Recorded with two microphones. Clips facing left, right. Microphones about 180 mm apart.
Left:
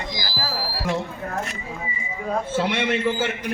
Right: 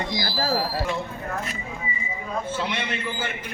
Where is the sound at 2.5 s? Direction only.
75° left (ahead or behind).